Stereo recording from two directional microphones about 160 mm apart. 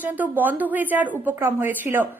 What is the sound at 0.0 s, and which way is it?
A woman's voice, 10° right (ahead or behind).